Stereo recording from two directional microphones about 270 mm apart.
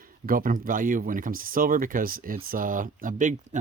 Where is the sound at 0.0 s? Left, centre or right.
Right.